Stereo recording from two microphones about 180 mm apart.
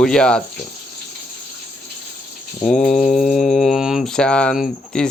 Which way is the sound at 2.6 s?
5° left (ahead or behind).